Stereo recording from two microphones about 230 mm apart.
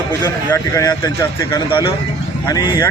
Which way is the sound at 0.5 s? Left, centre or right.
Centre.